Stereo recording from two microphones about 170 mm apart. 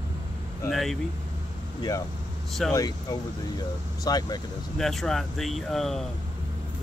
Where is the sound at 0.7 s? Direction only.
Centre (ahead or behind).